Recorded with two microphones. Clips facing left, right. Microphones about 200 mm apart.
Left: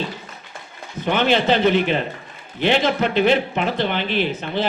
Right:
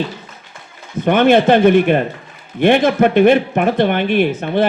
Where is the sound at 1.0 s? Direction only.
55° right (ahead or behind).